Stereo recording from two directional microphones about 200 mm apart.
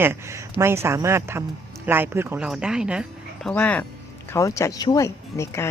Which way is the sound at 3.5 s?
5° left (ahead or behind).